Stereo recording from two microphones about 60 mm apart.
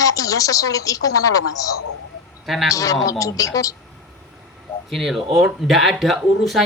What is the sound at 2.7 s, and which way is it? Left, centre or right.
Speech, left.